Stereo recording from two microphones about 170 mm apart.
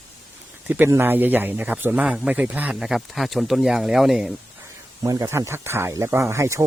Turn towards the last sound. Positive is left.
turn(degrees=-15)  # may be behind; listen again after turning